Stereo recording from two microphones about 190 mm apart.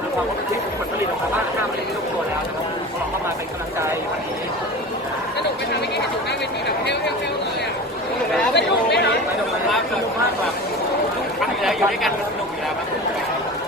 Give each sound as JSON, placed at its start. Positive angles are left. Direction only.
{"t": 8.5, "sound": "chatter", "side_deg": 60}
{"t": 11.6, "sound": "chatter", "side_deg": 0}